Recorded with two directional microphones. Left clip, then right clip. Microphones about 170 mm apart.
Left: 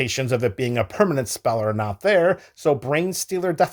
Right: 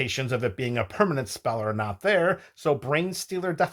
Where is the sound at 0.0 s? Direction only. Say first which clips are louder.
Left 5 dB; 35° left (ahead or behind).